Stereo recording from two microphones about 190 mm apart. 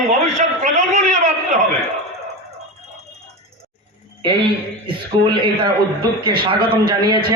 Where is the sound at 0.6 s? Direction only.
40° right (ahead or behind).